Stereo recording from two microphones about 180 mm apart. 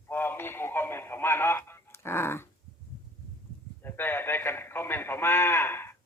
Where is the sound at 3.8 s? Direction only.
10° left (ahead or behind).